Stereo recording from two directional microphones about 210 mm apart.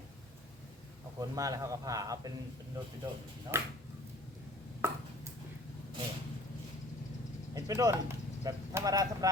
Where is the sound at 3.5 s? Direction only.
10° right (ahead or behind).